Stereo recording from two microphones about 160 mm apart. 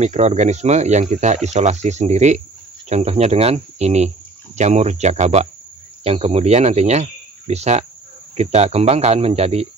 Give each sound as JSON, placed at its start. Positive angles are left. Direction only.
{"t": 0.0, "sound": "a man's voice", "side_deg": -45}